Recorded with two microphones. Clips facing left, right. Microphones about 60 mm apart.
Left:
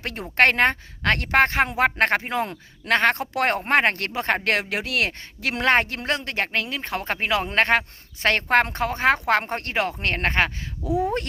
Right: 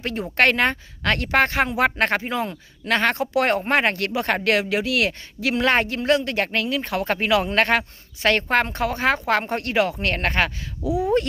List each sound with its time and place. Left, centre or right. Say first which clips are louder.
0.0 s a woman's voice: even; left
10.8 s speech: even; centre